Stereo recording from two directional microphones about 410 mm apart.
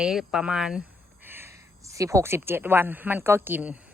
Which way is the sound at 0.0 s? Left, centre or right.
Centre.